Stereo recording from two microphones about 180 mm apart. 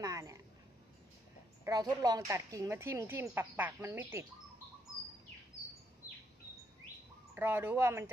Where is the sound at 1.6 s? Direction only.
20° right (ahead or behind).